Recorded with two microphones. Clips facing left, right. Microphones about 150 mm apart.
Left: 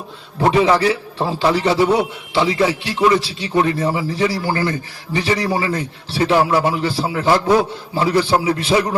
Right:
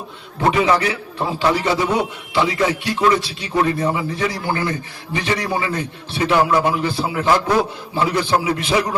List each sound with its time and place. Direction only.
0.3 s a man's voice: 30° left (ahead or behind)